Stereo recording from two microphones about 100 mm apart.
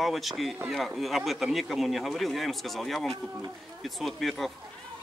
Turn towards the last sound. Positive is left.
turn(degrees=0)  # may be behind; listen again after turning